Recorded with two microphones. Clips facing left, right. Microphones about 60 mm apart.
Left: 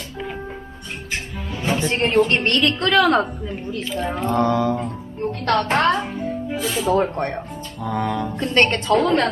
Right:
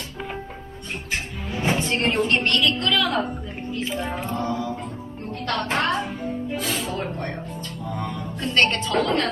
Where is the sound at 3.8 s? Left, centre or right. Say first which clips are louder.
Even; right.